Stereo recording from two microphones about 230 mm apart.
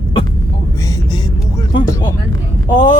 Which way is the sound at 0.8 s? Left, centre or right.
Centre.